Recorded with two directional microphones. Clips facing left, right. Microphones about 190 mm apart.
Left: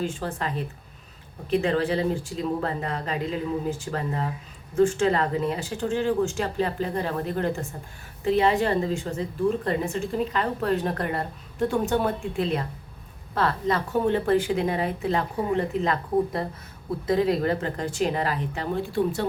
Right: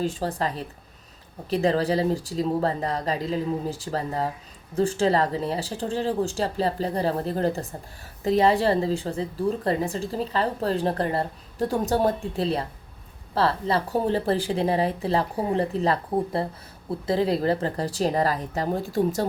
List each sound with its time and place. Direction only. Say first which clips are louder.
0.0 s a woman's voice: right 3 dB; 35° right (ahead or behind)